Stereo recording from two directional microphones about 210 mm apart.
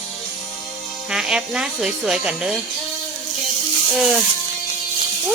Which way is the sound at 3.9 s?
Centre (ahead or behind).